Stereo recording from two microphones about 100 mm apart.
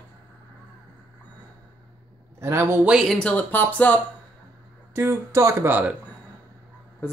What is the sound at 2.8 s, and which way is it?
Speech, 5° right (ahead or behind).